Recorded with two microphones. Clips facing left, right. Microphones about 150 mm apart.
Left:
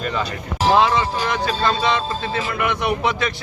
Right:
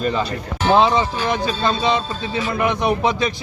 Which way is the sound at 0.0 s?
30° right (ahead or behind).